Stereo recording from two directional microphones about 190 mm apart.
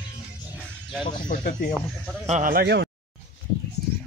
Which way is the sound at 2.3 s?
45° right (ahead or behind).